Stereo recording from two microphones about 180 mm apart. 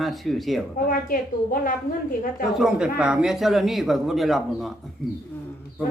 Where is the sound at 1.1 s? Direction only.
50° left (ahead or behind).